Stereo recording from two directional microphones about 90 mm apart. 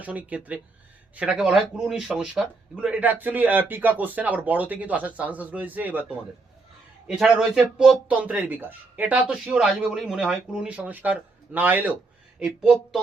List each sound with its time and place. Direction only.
0.0 s a man's voice: 15° right (ahead or behind)
7.1 s a man's voice: 5° right (ahead or behind)
9.6 s a man's voice: 5° right (ahead or behind)
12.6 s a man's voice: 5° right (ahead or behind)